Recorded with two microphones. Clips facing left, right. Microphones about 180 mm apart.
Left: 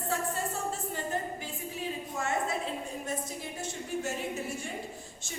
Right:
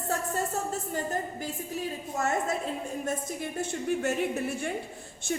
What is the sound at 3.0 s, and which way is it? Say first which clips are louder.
A woman's voice: right 4 dB; 55° right (ahead or behind).